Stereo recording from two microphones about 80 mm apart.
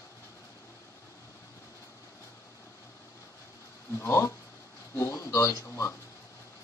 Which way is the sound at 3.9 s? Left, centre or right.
Left.